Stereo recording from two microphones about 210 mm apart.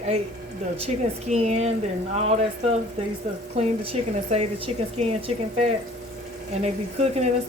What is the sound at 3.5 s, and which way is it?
Speech, 30° right (ahead or behind).